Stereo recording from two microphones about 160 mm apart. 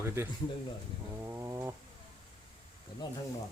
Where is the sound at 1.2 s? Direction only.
15° right (ahead or behind).